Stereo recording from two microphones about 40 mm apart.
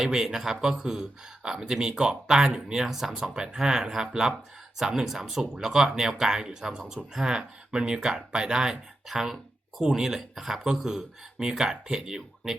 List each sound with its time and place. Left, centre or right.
0.0 s speech: centre
10.2 s speech: centre